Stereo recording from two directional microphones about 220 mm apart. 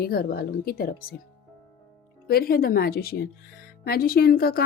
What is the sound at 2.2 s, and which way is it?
A woman's voice, 45° left (ahead or behind).